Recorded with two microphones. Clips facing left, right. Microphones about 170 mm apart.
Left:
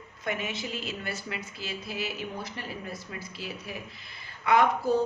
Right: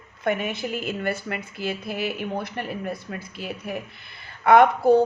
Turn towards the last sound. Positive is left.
turn(degrees=-60)  # may be behind; listen again after turning